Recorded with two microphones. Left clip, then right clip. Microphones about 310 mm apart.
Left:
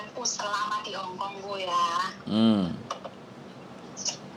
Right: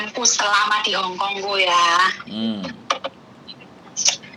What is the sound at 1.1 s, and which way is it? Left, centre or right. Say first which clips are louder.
Speech: right 12 dB; right.